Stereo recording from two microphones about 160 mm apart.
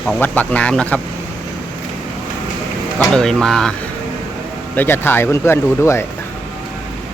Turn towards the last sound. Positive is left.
turn(degrees=15)  # may be behind; listen again after turning